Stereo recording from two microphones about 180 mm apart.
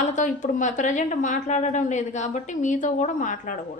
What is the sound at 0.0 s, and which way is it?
A woman's voice, 45° left (ahead or behind).